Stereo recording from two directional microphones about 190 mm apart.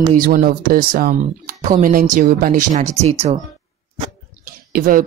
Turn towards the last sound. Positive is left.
turn(degrees=-50)  # may be behind; listen again after turning